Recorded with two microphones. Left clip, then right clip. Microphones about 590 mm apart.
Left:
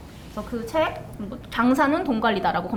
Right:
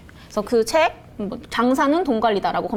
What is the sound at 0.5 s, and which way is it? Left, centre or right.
Speech, right.